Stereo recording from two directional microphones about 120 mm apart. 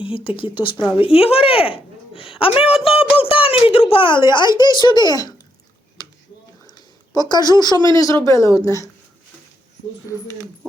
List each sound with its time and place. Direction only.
0.0 s speech: 45° left (ahead or behind)
6.7 s a sound: 35° left (ahead or behind)
7.6 s speech: 35° left (ahead or behind)